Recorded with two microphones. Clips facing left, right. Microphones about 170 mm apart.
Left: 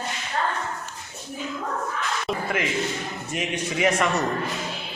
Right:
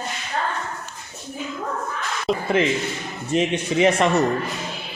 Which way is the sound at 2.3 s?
25° right (ahead or behind).